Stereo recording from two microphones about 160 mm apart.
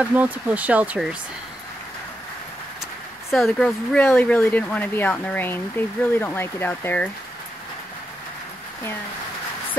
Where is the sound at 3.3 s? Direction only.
5° left (ahead or behind).